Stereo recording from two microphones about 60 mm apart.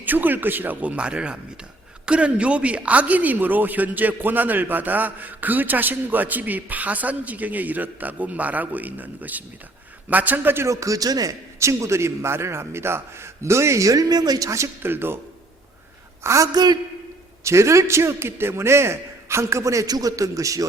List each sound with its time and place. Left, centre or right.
0.0 s a woman's voice: right
10.7 s speech: right
11.6 s a man's voice: right
14.8 s a man's voice: right
16.2 s a woman's voice: right